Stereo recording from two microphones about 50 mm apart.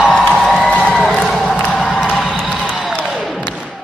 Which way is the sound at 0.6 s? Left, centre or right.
Left.